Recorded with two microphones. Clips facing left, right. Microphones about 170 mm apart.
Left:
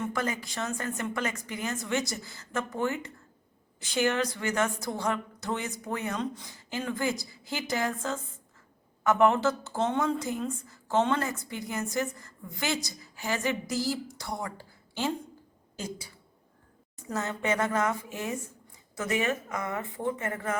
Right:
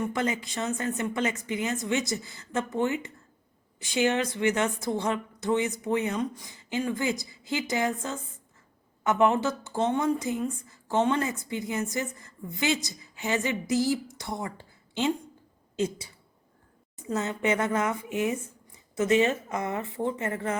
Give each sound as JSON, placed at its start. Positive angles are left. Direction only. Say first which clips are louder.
{"t": 0.1, "sound": "a woman's voice", "louder": "right 3 dB", "side_deg": -20}
{"t": 17.1, "sound": "a woman's voice", "louder": "right 3 dB", "side_deg": -20}